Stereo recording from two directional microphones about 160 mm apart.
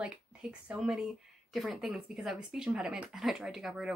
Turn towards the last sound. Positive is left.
turn(degrees=0)  # may be behind; listen again after turning